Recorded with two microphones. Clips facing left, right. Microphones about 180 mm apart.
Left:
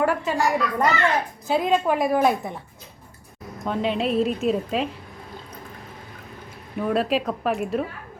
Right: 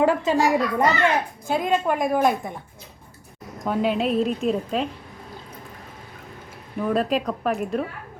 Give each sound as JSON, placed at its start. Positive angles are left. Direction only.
{"t": 0.0, "sound": "a child's voice", "side_deg": -20}
{"t": 1.5, "sound": "a woman's voice", "side_deg": 0}
{"t": 3.7, "sound": "a woman's voice", "side_deg": -5}
{"t": 6.7, "sound": "a woman's voice", "side_deg": 5}